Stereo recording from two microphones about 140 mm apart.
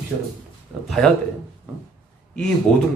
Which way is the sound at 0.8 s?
5° left (ahead or behind).